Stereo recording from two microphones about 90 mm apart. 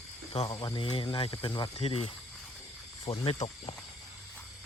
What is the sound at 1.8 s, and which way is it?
Speech, 90° left.